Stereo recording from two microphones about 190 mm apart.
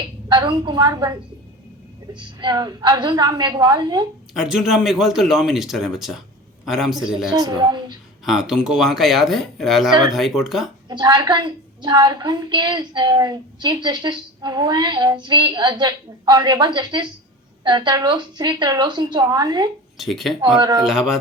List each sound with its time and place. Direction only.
0.3 s a woman's voice: 25° right (ahead or behind)
2.1 s a woman's voice: 25° right (ahead or behind)
4.4 s speech: 5° right (ahead or behind)
7.3 s a woman's voice: 20° right (ahead or behind)
8.2 s speech: centre (ahead or behind)
10.8 s a woman's voice: 20° right (ahead or behind)
20.0 s speech: centre (ahead or behind)
20.6 s a woman's voice: 20° right (ahead or behind)